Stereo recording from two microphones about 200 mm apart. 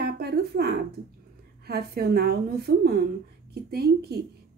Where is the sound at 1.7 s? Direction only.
55° right (ahead or behind).